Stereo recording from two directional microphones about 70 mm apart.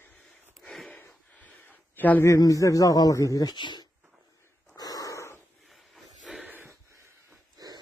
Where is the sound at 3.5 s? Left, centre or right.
Left.